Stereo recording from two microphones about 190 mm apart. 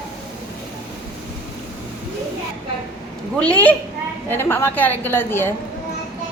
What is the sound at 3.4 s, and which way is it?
A woman's voice, 5° left (ahead or behind).